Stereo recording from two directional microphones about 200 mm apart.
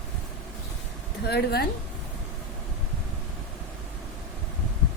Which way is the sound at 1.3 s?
50° left (ahead or behind).